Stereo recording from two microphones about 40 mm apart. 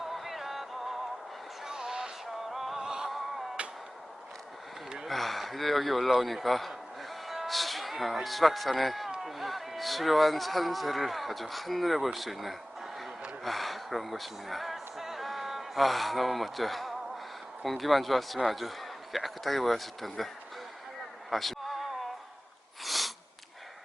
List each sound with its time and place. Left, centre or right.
0.0 s music: centre
1.6 s a sound: centre
2.5 s music: centre
2.7 s music: centre
3.6 s arrow: right
5.0 s speech: centre
21.2 s a sound: centre
22.8 s sniff: centre